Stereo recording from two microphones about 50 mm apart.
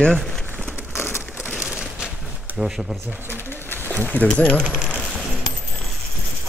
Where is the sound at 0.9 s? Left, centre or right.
Left.